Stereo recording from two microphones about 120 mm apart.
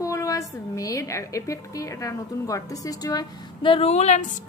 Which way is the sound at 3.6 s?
50° left (ahead or behind).